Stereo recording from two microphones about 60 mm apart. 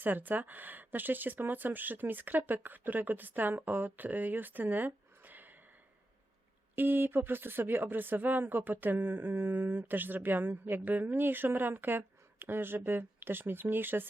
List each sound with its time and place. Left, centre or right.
0.0 s speech: right
6.7 s speech: right